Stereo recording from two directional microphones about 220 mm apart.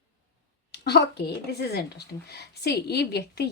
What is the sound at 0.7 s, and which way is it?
Speech, 50° left (ahead or behind).